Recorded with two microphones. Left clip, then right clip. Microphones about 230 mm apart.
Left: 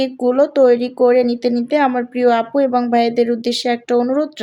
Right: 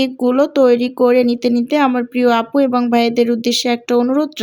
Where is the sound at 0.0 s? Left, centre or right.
Right.